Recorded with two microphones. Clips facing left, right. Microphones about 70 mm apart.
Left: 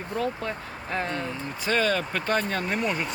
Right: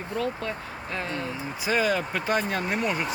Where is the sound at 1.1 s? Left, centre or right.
Centre.